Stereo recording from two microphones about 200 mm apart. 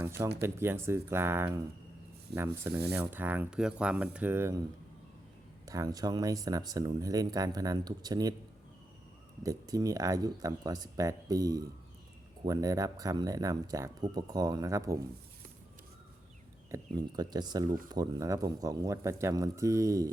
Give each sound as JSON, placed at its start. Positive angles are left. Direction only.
{"t": 0.4, "sound": "speech", "side_deg": -10}
{"t": 5.6, "sound": "speech", "side_deg": -15}
{"t": 9.4, "sound": "speech", "side_deg": -15}
{"t": 16.7, "sound": "speech", "side_deg": -20}